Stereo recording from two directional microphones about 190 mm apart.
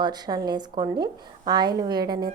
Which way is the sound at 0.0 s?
20° right (ahead or behind).